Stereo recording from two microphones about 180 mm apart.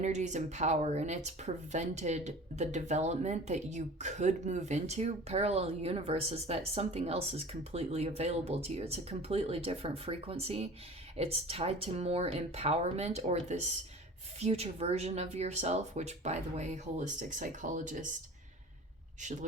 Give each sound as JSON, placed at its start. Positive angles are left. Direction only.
{"t": 0.0, "sound": "speech", "side_deg": -40}